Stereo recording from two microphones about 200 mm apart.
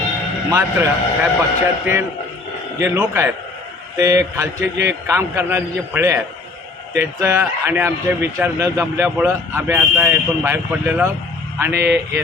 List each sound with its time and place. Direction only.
0.5 s a man's voice: 10° right (ahead or behind)
2.7 s a man's voice: 15° right (ahead or behind)